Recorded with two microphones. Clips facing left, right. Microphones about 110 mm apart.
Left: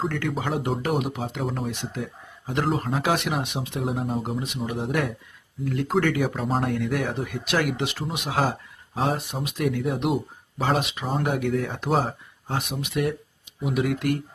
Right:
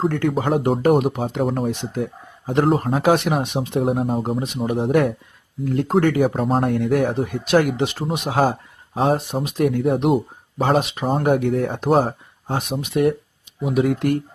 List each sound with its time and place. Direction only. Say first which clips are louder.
0.1 s speech: right 7 dB; 45° right (ahead or behind)
11.0 s speech: right 7 dB; 50° right (ahead or behind)
12.5 s speech: right 6 dB; 30° right (ahead or behind)